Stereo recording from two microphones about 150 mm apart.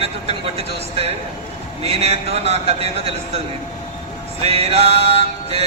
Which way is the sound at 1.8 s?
45° right (ahead or behind).